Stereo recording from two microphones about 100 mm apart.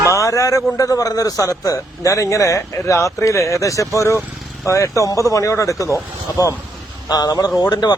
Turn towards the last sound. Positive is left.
turn(degrees=45)  # may be behind; listen again after turning